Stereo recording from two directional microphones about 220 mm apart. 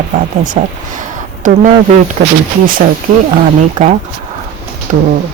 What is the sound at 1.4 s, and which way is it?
Speech, 35° right (ahead or behind).